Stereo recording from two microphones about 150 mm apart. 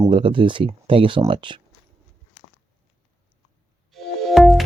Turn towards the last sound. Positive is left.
turn(degrees=0)  # may be behind; listen again after turning